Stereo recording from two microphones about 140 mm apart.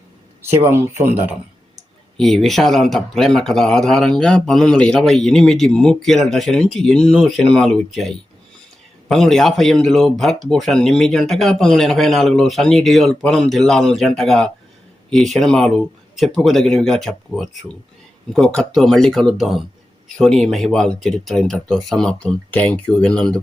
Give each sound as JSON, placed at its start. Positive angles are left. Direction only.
{"t": 0.4, "sound": "speech", "side_deg": -20}
{"t": 2.1, "sound": "speech", "side_deg": 5}